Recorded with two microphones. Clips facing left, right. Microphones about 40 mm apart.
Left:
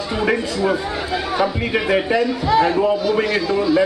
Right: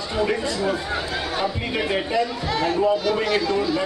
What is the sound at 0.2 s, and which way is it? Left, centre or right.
A man's voice, left.